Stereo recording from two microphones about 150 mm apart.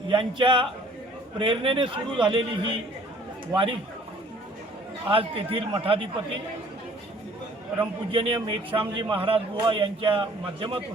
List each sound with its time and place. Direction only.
0.1 s a man's voice: 35° right (ahead or behind)
5.1 s a man's voice: 40° right (ahead or behind)
8.1 s a man's voice: 35° right (ahead or behind)